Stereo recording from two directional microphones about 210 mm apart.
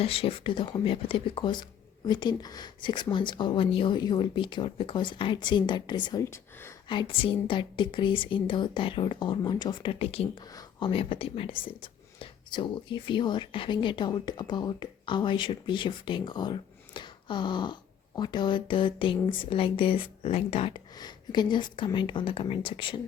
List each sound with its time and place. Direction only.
0.0 s a woman's voice: 25° left (ahead or behind)
6.8 s a woman's voice: 25° left (ahead or behind)